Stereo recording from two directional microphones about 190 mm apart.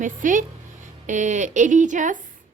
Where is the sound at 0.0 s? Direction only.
45° right (ahead or behind).